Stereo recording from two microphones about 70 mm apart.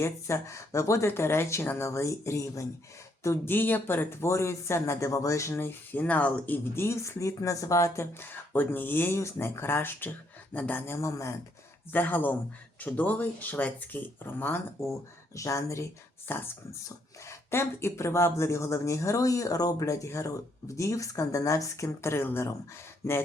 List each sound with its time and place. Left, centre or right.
0.0 s speech: left
3.4 s speech: left
6.0 s speech: left
10.9 s speech: left
11.9 s speech: left
14.8 s speech: left
16.3 s speech: left
16.8 s speech: left